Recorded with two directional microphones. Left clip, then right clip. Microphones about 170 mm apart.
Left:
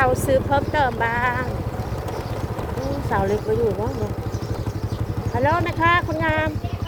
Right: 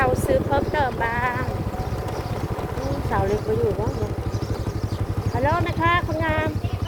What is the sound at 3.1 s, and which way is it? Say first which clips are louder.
Speech: left 2 dB; 35° left (ahead or behind).